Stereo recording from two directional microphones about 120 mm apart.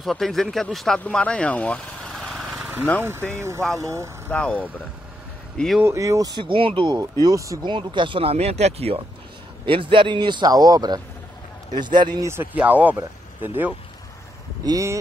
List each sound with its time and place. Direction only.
0.0 s speech: centre (ahead or behind)
2.1 s lawn mower: centre (ahead or behind)
3.0 s speech: 20° right (ahead or behind)
4.3 s speech: 10° left (ahead or behind)
5.9 s speech: 30° right (ahead or behind)
6.3 s speech: 45° right (ahead or behind)
7.0 s speech: 30° right (ahead or behind)
7.6 s speech: 40° right (ahead or behind); by 9.0 s 55° right (ahead or behind)
9.7 s speech: 45° right (ahead or behind)
12.2 s speech: 20° right (ahead or behind)
14.6 s speech: 30° right (ahead or behind)